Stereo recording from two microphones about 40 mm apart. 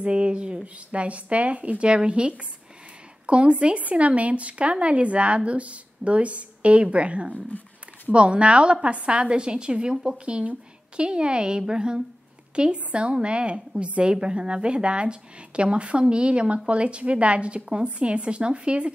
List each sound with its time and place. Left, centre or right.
0.0 s speech: right